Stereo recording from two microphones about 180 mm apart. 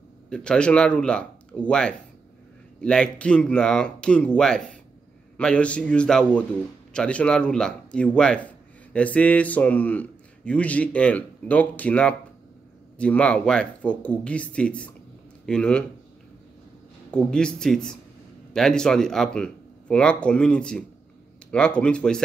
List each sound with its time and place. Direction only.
0.3 s a man's voice: 5° left (ahead or behind)
17.1 s speech: 5° left (ahead or behind)